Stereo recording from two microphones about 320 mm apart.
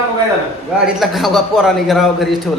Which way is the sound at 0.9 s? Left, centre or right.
Centre.